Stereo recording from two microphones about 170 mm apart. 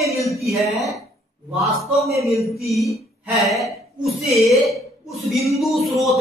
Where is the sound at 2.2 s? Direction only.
15° left (ahead or behind).